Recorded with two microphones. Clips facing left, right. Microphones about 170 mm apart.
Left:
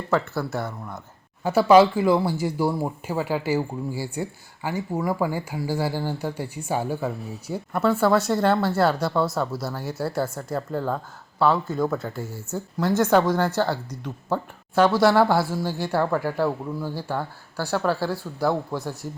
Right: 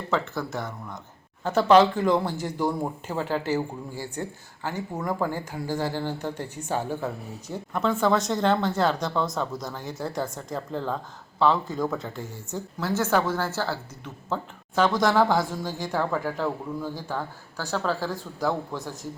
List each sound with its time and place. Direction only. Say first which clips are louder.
0.1 s speech: left 4 dB; 10° left (ahead or behind)